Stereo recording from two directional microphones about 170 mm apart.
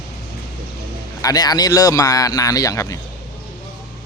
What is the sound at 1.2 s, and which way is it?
A man's voice, 20° left (ahead or behind).